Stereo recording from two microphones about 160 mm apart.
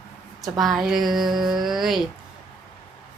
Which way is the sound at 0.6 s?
Centre (ahead or behind).